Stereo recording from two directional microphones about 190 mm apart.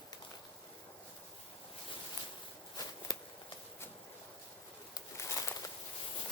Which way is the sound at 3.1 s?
20° left (ahead or behind).